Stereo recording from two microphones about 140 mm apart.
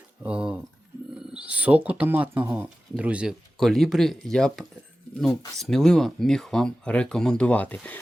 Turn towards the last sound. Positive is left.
turn(degrees=10)  # may be behind; listen again after turning